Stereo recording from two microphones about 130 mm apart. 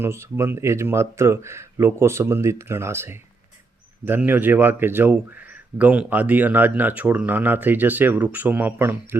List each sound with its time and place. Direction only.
0.0 s a man's voice: 20° right (ahead or behind)